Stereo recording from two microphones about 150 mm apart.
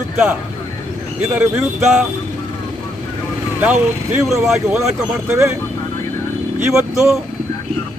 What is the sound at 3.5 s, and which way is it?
Speech, 10° right (ahead or behind).